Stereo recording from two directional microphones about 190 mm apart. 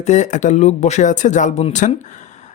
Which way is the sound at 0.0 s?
40° left (ahead or behind).